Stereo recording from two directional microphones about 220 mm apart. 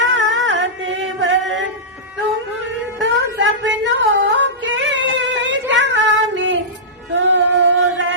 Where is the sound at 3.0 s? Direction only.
55° right (ahead or behind).